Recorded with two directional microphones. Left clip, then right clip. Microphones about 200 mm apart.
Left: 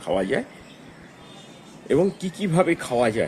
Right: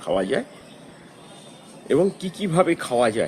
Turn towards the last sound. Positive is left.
turn(degrees=0)  # may be behind; listen again after turning